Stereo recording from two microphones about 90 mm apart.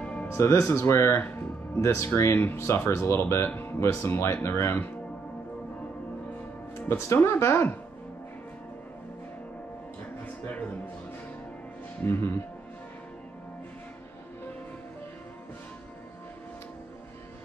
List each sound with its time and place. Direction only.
0.0 s music: 15° left (ahead or behind)
0.3 s speech: 30° left (ahead or behind)
1.8 s speech: 30° left (ahead or behind)
7.2 s speech: 30° left (ahead or behind)
10.2 s speech: 20° left (ahead or behind)
12.0 s speech: 25° left (ahead or behind)